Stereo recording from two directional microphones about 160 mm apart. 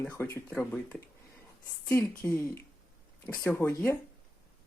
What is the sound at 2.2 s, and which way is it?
Speech, 15° left (ahead or behind).